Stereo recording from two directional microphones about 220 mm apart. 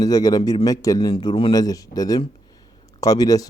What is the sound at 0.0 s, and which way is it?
Speech, 15° left (ahead or behind).